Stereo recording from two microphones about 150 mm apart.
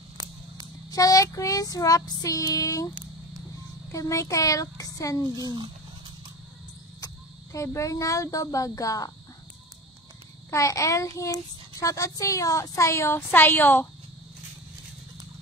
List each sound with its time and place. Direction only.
0.8 s child singing: 25° left (ahead or behind)
3.9 s speech: 20° left (ahead or behind)
5.3 s a sound: 30° right (ahead or behind)
7.5 s speech: 20° left (ahead or behind)
10.5 s speech: 20° left (ahead or behind)